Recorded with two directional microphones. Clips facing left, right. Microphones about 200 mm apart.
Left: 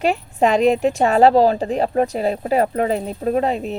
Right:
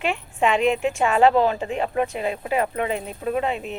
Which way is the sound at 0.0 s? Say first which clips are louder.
Left 5 dB; 40° left (ahead or behind).